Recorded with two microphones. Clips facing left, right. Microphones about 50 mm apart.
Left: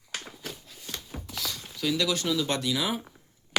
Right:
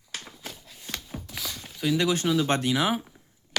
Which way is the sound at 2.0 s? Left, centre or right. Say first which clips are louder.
Right 4 dB; right.